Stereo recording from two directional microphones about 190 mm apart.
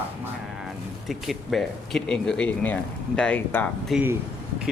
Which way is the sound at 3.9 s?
10° right (ahead or behind).